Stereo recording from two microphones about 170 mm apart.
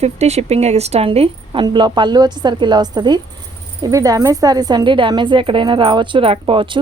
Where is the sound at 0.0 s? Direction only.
40° right (ahead or behind).